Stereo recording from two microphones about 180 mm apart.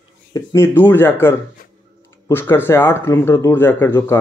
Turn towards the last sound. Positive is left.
turn(degrees=15)  # may be behind; listen again after turning